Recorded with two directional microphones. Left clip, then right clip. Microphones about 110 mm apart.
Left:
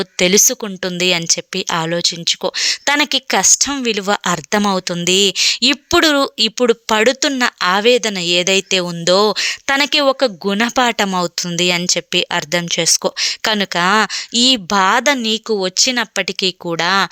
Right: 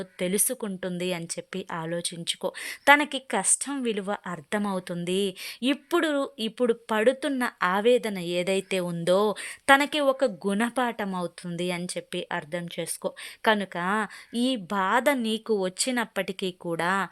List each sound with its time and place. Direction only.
0.0 s a woman's voice: 45° left (ahead or behind)
0.4 s speech: 25° left (ahead or behind)
1.7 s speech: 35° left (ahead or behind)
10.8 s speech: 35° left (ahead or behind)
14.8 s speech: 15° left (ahead or behind)